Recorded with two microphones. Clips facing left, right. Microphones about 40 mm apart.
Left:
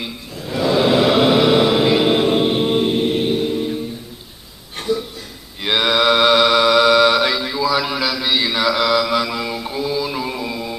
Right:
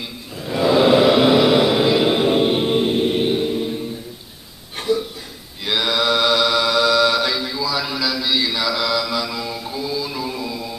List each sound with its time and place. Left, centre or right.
0.4 s mantra: centre
3.1 s music: centre
3.4 s mantra: centre
4.7 s a sound: centre
5.6 s mantra: left